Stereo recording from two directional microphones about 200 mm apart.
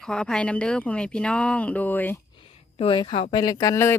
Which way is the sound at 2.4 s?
30° left (ahead or behind).